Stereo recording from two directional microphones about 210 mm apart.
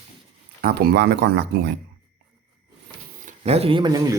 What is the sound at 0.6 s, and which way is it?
Speech, 50° right (ahead or behind).